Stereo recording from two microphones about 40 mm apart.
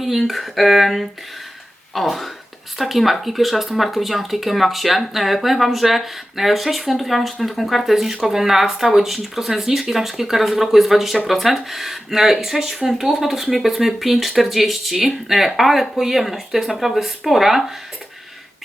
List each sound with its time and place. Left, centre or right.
0.0 s speech: centre